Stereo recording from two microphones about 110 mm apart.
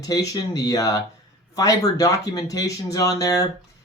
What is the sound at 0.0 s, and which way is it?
Speech, 35° left (ahead or behind).